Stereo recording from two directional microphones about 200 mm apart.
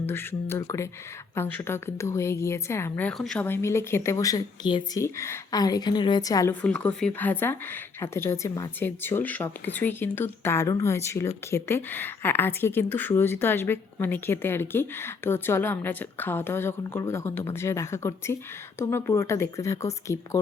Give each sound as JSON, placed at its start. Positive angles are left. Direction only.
{"t": 0.0, "sound": "a woman's voice", "side_deg": 10}